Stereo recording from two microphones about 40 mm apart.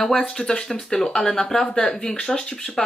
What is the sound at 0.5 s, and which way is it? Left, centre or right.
Speech, centre.